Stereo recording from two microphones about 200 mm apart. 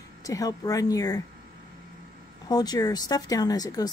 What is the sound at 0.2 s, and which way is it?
Speech, 15° left (ahead or behind).